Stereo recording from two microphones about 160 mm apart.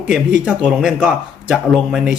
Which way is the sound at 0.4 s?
5° right (ahead or behind).